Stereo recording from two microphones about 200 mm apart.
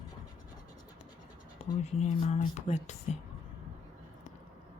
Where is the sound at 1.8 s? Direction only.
35° left (ahead or behind).